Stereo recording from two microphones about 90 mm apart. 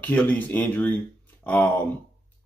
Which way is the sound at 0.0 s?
15° left (ahead or behind).